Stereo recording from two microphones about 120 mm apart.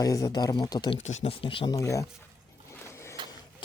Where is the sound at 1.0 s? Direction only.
75° left (ahead or behind).